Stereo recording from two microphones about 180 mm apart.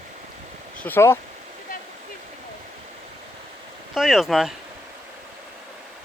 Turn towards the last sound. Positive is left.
turn(degrees=0)  # may be behind; listen again after turning